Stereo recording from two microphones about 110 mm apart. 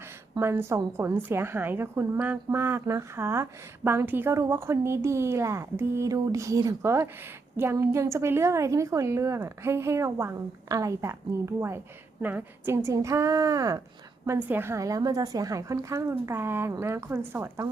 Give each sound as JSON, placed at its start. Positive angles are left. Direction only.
{"t": 0.3, "sound": "a woman's voice", "side_deg": -20}
{"t": 14.3, "sound": "a woman's voice", "side_deg": -20}